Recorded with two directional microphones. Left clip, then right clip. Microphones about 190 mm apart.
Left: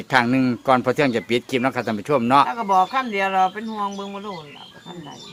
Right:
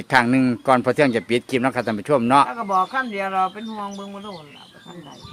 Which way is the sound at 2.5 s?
15° left (ahead or behind).